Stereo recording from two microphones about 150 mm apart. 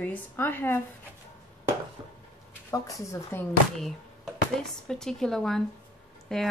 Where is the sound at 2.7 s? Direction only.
20° left (ahead or behind).